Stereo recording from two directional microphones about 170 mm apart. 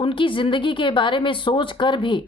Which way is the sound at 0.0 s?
30° left (ahead or behind).